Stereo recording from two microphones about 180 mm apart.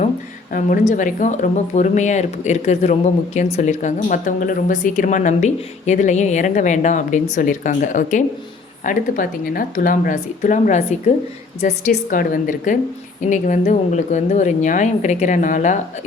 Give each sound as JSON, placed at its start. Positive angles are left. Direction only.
{"t": 0.5, "sound": "speech", "side_deg": 45}